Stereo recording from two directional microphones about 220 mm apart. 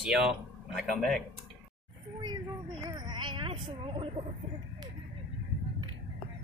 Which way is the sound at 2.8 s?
20° right (ahead or behind).